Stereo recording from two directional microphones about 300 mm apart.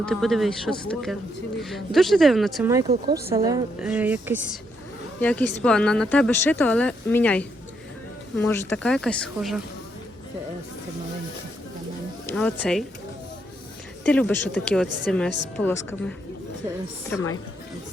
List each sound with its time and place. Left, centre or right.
0.0 s speech: centre
2.9 s speech: right
3.2 s a woman's voice: centre
5.2 s speech: centre
12.3 s speech: centre
14.0 s speech: centre